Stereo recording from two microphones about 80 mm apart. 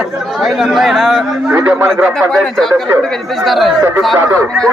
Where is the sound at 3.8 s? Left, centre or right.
Right.